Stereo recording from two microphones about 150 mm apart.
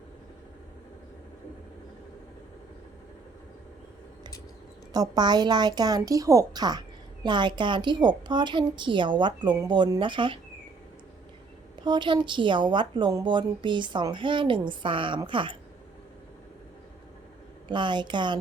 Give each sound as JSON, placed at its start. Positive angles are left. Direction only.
{"t": 4.9, "sound": "a woman's voice", "side_deg": -30}
{"t": 11.8, "sound": "a woman's voice", "side_deg": -30}
{"t": 17.7, "sound": "a woman's voice", "side_deg": -30}